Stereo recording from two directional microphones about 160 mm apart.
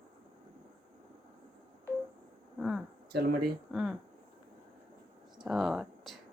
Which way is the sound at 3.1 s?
80° right.